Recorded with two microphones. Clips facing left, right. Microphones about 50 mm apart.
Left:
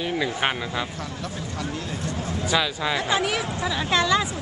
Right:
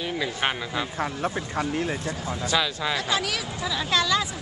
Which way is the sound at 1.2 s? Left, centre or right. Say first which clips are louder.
Right 2 dB; right.